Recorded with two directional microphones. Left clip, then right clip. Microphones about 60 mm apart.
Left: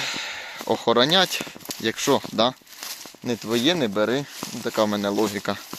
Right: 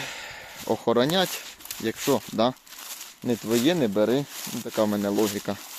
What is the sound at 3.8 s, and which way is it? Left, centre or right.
Speech, right.